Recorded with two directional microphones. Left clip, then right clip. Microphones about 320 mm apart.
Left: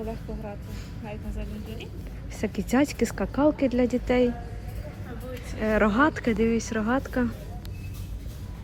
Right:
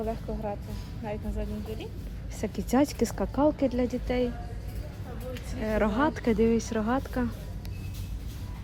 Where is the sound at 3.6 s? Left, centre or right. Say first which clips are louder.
Left 4 dB; right.